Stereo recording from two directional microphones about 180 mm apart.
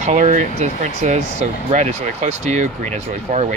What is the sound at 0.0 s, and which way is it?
Speech, 40° right (ahead or behind).